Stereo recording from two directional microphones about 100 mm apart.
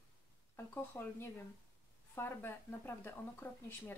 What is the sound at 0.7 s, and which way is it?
Speech, 20° left (ahead or behind).